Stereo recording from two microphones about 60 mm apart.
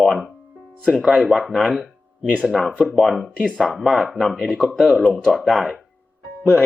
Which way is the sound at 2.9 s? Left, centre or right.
Centre.